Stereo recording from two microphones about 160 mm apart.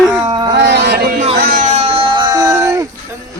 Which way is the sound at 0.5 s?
90° right.